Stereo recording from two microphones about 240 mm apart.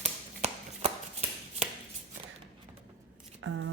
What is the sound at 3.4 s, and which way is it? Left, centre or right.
Speech, right.